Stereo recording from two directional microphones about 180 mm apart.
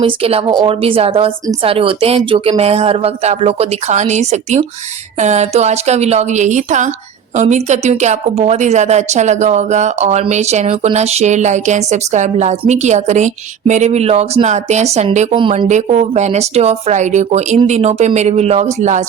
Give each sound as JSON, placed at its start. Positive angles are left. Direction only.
{"t": 0.0, "sound": "a woman's voice", "side_deg": -30}